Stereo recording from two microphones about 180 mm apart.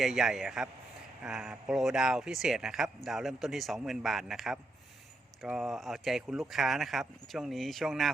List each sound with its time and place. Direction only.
0.0 s speech: centre (ahead or behind)